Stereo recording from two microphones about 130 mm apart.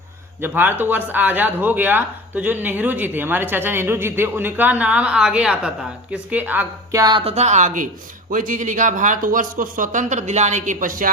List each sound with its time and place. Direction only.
0.4 s speech: 15° right (ahead or behind)
6.9 s speech: 30° right (ahead or behind)
7.3 s speech: 60° right (ahead or behind)
8.3 s a man's voice: 90° right